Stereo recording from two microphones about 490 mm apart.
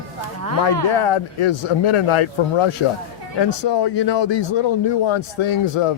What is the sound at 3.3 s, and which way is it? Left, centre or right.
A man's voice, left.